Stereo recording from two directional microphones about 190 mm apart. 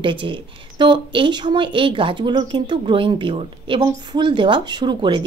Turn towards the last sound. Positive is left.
turn(degrees=-25)  # may be behind; listen again after turning